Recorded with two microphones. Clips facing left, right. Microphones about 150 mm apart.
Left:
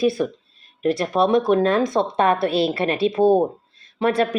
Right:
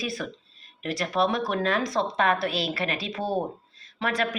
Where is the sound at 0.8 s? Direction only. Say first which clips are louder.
Left 6 dB; 40° left (ahead or behind).